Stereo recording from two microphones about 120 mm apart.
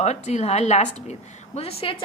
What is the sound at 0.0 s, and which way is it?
A woman's voice, 65° left (ahead or behind).